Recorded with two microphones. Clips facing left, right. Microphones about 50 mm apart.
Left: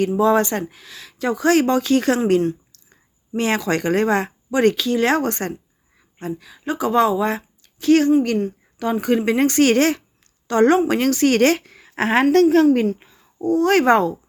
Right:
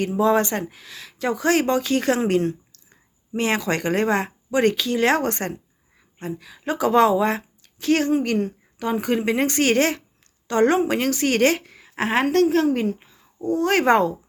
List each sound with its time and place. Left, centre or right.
0.2 s speech: right
6.7 s speech: right
8.8 s a woman's voice: right; by 12.6 s centre
13.5 s speech: right